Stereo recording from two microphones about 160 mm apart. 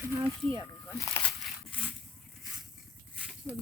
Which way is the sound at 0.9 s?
20° left (ahead or behind).